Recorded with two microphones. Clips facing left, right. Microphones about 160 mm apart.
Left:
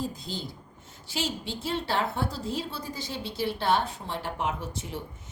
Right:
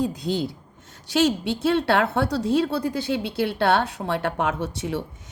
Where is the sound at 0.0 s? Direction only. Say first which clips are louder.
Right 10 dB; 75° right (ahead or behind).